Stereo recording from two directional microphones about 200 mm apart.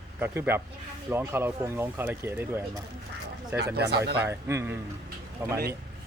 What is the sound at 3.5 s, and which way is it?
Speech, 55° right (ahead or behind).